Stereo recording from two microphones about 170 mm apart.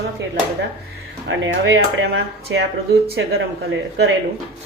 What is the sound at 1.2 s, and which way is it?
Speech, 90° right.